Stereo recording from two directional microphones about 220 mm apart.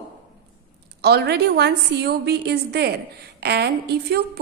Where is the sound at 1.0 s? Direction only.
45° right (ahead or behind).